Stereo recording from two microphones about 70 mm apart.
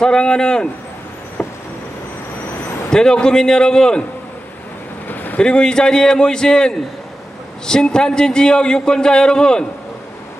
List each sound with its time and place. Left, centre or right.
0.0 s a man's voice: centre
2.9 s a man's voice: centre
5.1 s a sound: left
5.4 s a man's voice: centre